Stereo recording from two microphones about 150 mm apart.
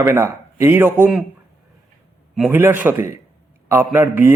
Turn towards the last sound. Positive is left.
turn(degrees=-15)  # may be behind; listen again after turning